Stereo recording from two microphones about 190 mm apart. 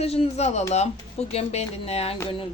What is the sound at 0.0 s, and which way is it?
Speech, 30° left (ahead or behind).